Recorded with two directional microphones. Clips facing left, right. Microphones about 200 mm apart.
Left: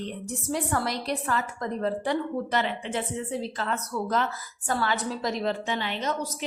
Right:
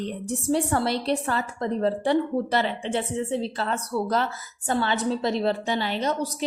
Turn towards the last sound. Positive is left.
turn(degrees=-35)  # may be behind; listen again after turning